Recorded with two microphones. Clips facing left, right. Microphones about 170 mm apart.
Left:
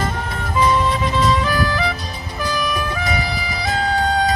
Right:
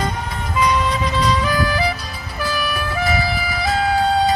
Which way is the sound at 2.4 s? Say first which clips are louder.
Left 1 dB; 20° left (ahead or behind).